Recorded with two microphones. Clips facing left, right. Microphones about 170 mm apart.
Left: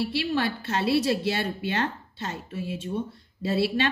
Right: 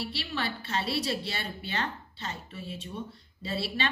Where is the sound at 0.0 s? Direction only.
55° left (ahead or behind).